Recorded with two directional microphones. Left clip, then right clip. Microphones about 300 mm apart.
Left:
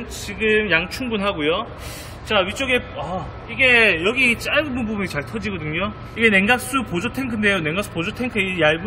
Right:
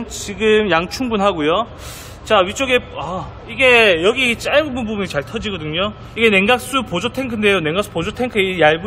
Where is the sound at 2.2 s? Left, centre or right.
Centre.